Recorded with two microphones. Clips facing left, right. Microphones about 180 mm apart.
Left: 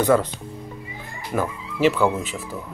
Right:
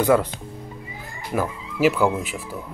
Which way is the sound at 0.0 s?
10° right (ahead or behind).